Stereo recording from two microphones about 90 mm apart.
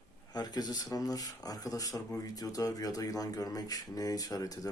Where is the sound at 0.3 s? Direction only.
50° left (ahead or behind).